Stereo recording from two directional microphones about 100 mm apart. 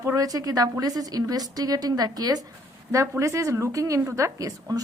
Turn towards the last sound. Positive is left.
turn(degrees=-35)  # may be behind; listen again after turning